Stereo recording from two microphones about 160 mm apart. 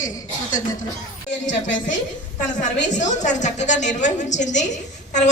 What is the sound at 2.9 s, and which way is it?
A woman's voice, 50° left (ahead or behind).